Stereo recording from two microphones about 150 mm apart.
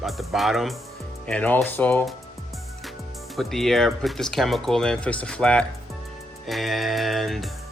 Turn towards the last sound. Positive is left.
turn(degrees=0)  # may be behind; listen again after turning